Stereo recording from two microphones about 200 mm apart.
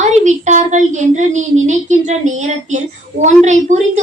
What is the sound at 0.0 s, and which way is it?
A woman's voice, 35° right (ahead or behind).